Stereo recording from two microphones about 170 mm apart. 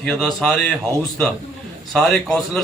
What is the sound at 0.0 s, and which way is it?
Speech, 5° left (ahead or behind).